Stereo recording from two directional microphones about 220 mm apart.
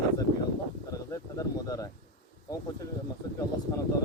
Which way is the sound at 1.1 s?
15° left (ahead or behind).